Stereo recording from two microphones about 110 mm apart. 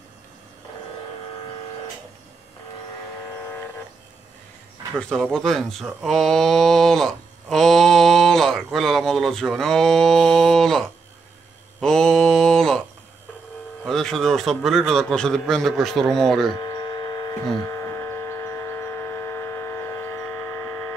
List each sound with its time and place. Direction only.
4.9 s speech: 5° left (ahead or behind)
11.8 s mantra: 5° left (ahead or behind)
13.8 s a man's voice: centre (ahead or behind)
16.5 s hum: 40° left (ahead or behind); by 20.8 s 20° left (ahead or behind)